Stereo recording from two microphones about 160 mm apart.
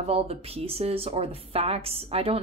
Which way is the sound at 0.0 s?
40° right (ahead or behind).